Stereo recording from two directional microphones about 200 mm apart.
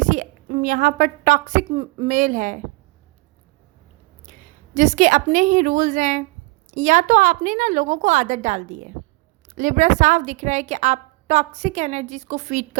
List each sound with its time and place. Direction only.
0.0 s a woman's voice: 40° right (ahead or behind)
4.3 s a woman's voice: 40° right (ahead or behind)